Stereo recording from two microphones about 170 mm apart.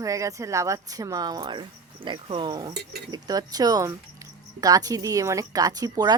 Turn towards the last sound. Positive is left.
turn(degrees=-25)  # may be behind; listen again after turning